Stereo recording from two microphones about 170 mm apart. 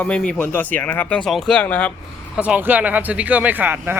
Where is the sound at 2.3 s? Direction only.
5° right (ahead or behind).